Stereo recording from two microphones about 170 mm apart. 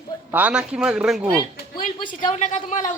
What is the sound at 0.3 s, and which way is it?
Speech, 10° right (ahead or behind).